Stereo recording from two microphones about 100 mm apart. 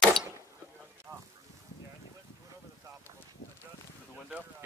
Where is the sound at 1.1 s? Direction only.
20° right (ahead or behind).